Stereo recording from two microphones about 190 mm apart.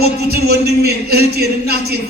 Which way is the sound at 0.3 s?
60° right (ahead or behind).